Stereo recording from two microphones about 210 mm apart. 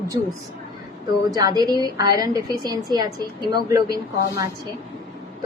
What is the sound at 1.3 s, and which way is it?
A woman's voice, 20° right (ahead or behind).